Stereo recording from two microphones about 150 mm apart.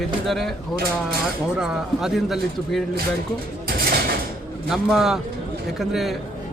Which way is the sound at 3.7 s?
85° right.